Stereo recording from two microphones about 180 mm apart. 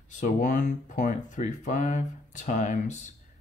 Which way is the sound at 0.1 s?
45° left (ahead or behind).